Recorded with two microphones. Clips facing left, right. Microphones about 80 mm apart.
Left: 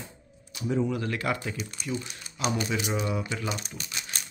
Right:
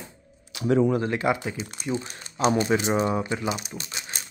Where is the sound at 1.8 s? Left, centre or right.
Right.